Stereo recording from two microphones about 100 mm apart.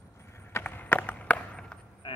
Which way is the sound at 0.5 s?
20° left (ahead or behind).